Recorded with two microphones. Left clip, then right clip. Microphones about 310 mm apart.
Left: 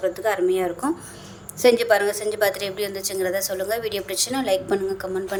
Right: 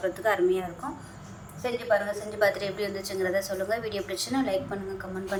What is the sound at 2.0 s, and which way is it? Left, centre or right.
A woman's voice, left.